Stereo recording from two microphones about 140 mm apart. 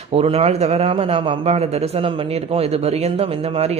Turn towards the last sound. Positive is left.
turn(degrees=-50)  # may be behind; listen again after turning